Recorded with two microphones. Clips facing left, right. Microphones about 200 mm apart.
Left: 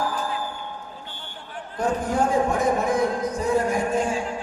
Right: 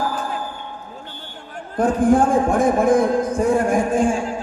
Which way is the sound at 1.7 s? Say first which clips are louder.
Right 9 dB; 50° right (ahead or behind).